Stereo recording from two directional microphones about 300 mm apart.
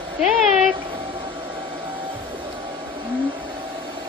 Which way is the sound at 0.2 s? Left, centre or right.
Centre.